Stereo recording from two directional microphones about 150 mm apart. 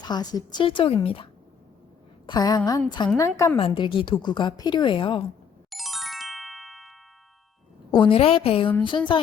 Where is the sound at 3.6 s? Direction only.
35° left (ahead or behind).